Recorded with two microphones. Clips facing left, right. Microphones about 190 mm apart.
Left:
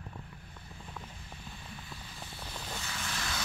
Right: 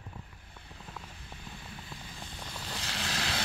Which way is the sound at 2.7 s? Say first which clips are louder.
Right 4 dB; 90° right.